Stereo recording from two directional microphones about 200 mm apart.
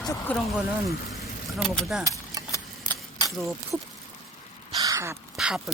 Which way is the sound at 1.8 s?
Centre (ahead or behind).